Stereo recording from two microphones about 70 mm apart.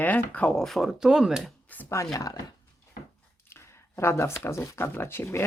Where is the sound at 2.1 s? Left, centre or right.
Left.